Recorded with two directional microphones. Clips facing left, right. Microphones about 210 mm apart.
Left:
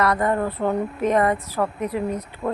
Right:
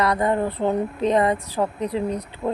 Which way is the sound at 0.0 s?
15° right (ahead or behind).